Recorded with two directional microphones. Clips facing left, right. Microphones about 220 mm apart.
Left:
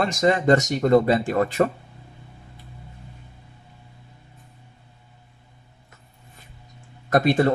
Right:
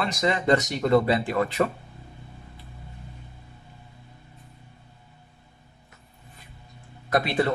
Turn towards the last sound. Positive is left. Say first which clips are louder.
# left 5 dB
turn(degrees=45)  # may be behind; listen again after turning